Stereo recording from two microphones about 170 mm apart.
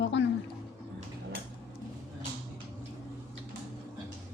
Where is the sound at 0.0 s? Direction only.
90° left.